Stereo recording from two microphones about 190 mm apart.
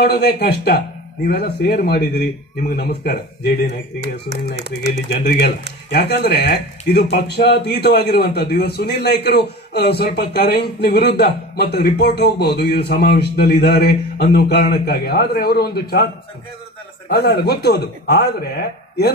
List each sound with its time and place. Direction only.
0.0 s speech: 60° left (ahead or behind)
4.6 s speech: 65° right (ahead or behind)
5.1 s speech: 60° left (ahead or behind)
17.1 s speech: 60° left (ahead or behind)